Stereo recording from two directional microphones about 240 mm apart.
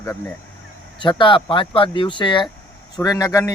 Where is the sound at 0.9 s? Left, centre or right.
Centre.